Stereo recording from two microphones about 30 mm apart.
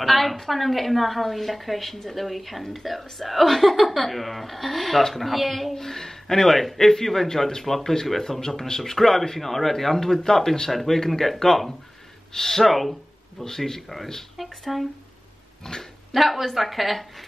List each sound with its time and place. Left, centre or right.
0.0 s a woman's voice: centre
5.8 s a man's voice: centre
8.9 s a man's voice: centre
10.7 s a woman's voice: centre
13.4 s a man's voice: centre
14.3 s speech: centre
15.7 s speech: centre
16.1 s a woman's voice: centre